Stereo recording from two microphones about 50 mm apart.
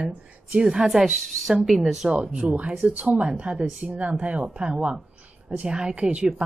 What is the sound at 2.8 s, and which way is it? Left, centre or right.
A woman's voice, right.